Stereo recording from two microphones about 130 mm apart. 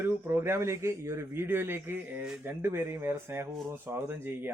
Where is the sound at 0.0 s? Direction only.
15° right (ahead or behind).